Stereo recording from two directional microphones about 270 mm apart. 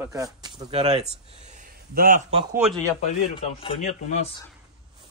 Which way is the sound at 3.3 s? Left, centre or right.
Left.